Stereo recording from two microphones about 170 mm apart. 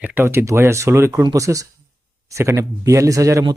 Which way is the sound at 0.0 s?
10° right (ahead or behind).